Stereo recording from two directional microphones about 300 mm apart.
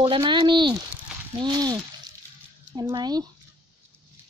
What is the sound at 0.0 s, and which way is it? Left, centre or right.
A woman's voice, centre.